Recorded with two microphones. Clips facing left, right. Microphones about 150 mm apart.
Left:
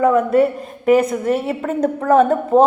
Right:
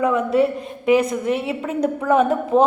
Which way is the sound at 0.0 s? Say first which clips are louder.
Left 4 dB; 50° left (ahead or behind).